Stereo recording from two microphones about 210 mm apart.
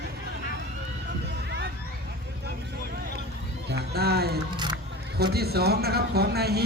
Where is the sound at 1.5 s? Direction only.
55° right (ahead or behind).